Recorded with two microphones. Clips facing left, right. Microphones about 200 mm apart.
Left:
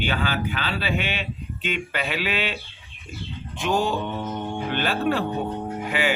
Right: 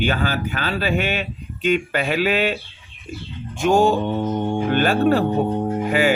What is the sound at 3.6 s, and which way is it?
Speech, 45° right (ahead or behind).